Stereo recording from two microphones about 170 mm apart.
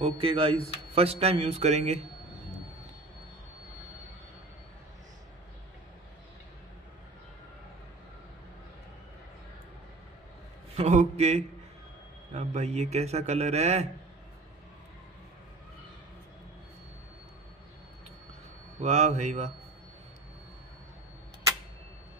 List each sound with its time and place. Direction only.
0.0 s a man's voice: 35° right (ahead or behind)
10.8 s a man's voice: 40° right (ahead or behind)
18.8 s a man's voice: 40° right (ahead or behind)